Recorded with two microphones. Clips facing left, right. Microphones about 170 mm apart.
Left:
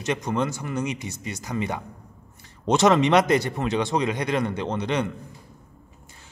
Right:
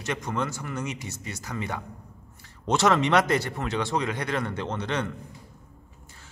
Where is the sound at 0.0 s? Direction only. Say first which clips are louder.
Left 4 dB; 20° left (ahead or behind).